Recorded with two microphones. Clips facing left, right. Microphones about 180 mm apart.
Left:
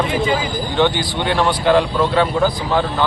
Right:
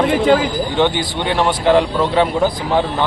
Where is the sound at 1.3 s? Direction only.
15° right (ahead or behind).